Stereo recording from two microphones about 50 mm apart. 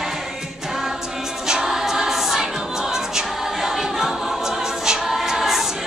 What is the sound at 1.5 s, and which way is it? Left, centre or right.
Choir, centre.